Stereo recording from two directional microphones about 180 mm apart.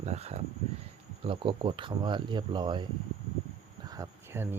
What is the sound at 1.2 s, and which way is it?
Speech, 30° right (ahead or behind).